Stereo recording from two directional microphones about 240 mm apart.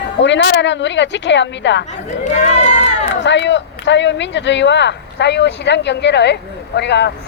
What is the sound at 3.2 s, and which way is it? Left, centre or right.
Speech, left.